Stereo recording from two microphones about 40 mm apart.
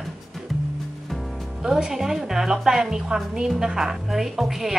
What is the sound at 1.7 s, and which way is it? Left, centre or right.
A woman's voice, centre.